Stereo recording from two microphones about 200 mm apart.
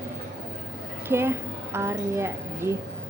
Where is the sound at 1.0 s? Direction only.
10° right (ahead or behind).